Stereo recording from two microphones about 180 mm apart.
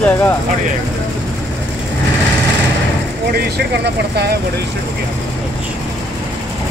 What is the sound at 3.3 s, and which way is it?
Speech, 60° right (ahead or behind).